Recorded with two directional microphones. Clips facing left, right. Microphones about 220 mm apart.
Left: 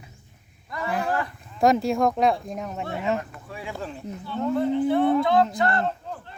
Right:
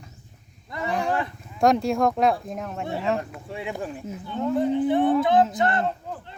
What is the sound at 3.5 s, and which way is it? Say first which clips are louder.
Speech: right 3 dB; 20° right (ahead or behind).